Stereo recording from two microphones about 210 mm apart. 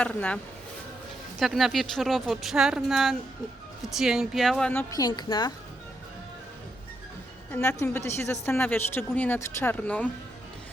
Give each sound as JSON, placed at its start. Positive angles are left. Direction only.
{"t": 0.0, "sound": "a woman's voice", "side_deg": 5}
{"t": 1.4, "sound": "a woman's voice", "side_deg": 0}
{"t": 7.5, "sound": "a woman's voice", "side_deg": 10}